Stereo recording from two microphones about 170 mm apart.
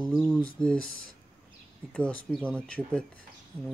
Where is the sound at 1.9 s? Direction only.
5° left (ahead or behind).